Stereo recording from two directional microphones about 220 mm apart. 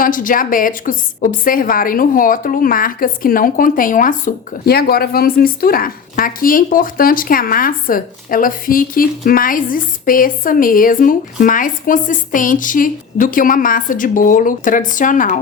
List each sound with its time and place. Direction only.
0.0 s a woman's voice: 40° left (ahead or behind)